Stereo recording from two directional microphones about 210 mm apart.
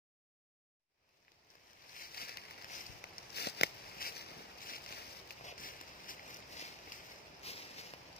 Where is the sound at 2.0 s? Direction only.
45° left (ahead or behind).